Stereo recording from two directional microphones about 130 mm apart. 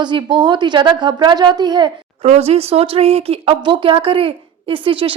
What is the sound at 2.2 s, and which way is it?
A woman's voice, 50° right (ahead or behind).